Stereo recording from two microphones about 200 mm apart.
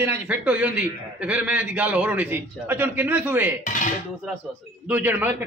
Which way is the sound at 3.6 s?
40° left (ahead or behind).